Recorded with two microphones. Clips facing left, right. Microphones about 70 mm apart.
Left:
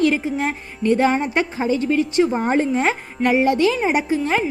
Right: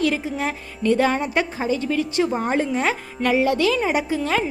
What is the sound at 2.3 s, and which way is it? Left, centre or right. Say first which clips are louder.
Speech: left 3 dB; left.